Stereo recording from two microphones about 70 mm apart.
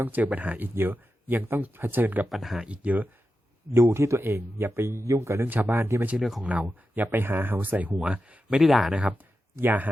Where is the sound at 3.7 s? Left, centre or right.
Right.